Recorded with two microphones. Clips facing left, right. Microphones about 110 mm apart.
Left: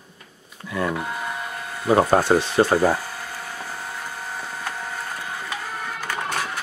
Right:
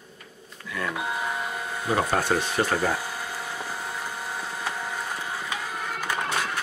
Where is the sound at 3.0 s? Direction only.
10° right (ahead or behind).